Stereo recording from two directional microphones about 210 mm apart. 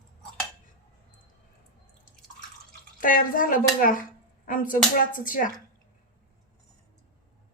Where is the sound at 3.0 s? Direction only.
40° left (ahead or behind).